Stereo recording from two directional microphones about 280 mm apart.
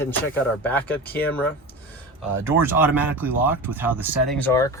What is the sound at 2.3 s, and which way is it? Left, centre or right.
Speech, centre.